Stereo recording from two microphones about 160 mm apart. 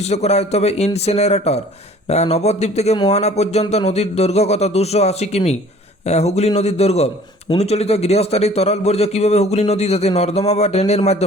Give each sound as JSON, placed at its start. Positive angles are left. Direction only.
{"t": 0.0, "sound": "a man's voice", "side_deg": 40}